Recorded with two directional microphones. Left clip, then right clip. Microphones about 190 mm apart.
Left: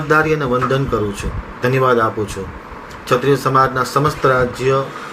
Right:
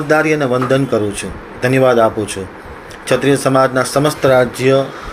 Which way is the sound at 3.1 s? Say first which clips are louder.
Right 1 dB; 15° right (ahead or behind).